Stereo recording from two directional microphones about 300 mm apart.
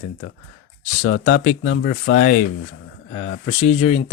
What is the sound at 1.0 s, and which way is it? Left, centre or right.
Speech, left.